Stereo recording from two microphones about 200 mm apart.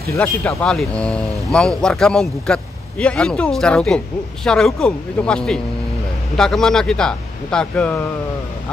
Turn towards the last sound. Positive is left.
turn(degrees=5)  # may be behind; listen again after turning